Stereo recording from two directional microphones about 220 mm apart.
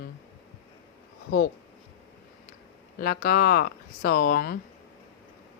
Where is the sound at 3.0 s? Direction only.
40° left (ahead or behind).